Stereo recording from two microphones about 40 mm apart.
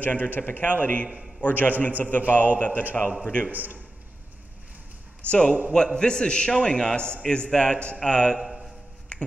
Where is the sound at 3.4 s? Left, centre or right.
Right.